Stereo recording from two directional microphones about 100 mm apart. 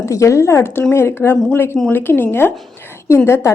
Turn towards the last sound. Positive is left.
turn(degrees=25)  # may be behind; listen again after turning